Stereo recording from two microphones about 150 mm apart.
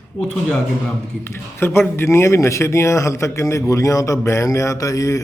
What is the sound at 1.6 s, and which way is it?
Speech, 15° left (ahead or behind).